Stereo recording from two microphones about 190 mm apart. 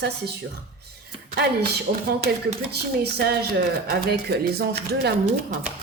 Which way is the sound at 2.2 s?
55° right (ahead or behind).